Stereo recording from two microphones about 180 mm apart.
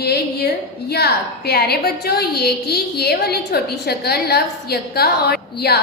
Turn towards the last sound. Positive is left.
turn(degrees=60)  # may be behind; listen again after turning